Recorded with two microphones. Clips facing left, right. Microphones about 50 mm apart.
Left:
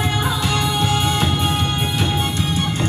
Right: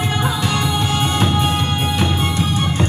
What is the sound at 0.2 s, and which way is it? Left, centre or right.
Music, centre.